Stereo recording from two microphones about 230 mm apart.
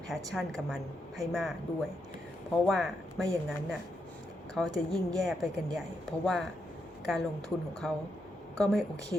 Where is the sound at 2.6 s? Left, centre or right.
Centre.